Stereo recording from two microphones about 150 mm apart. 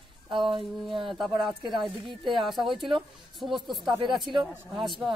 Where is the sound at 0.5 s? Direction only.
35° right (ahead or behind).